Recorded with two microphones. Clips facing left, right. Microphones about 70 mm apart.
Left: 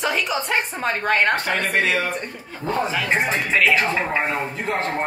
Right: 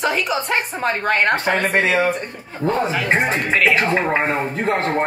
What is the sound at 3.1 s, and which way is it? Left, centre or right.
Speech, right.